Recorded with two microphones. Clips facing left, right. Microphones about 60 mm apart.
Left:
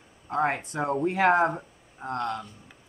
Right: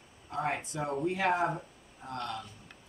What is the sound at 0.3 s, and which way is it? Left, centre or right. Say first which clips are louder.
Speech: left 7 dB; left.